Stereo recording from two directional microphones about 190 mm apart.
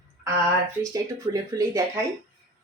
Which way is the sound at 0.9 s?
20° right (ahead or behind).